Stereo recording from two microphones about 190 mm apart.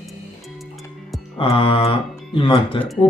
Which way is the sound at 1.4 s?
30° left (ahead or behind).